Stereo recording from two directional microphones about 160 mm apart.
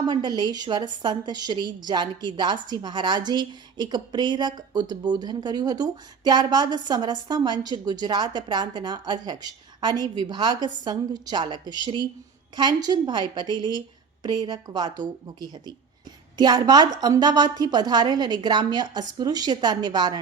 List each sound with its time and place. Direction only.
0.0 s a woman's voice: 30° right (ahead or behind)